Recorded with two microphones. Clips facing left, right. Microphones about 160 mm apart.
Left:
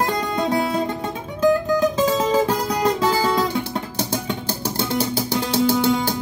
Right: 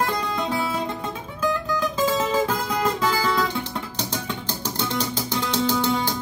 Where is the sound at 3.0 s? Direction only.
45° left (ahead or behind).